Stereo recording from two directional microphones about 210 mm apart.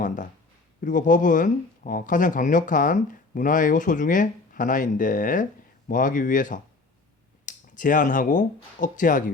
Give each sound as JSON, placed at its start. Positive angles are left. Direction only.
{"t": 0.8, "sound": "speech", "side_deg": 40}